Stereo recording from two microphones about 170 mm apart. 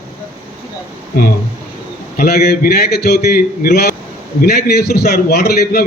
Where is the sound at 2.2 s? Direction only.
65° left (ahead or behind).